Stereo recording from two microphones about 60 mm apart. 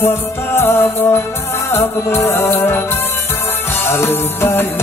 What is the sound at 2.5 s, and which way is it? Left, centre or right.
Music, left.